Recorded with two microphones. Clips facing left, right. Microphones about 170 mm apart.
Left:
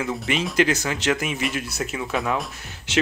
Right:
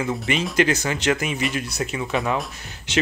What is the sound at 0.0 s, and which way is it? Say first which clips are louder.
Speech: right 1 dB; centre (ahead or behind).